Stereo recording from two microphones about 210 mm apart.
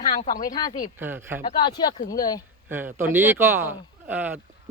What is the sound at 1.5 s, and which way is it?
Speech, 20° left (ahead or behind).